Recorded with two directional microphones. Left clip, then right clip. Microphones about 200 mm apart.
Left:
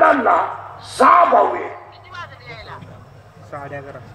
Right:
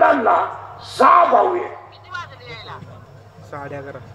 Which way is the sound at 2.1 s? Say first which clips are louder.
Right 2 dB; 30° right (ahead or behind).